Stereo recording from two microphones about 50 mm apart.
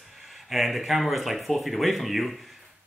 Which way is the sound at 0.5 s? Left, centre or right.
Centre.